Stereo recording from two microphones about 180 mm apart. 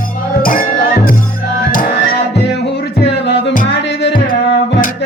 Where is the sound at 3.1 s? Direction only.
75° left (ahead or behind).